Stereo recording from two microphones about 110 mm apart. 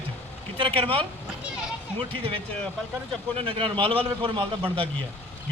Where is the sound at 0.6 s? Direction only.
55° right (ahead or behind).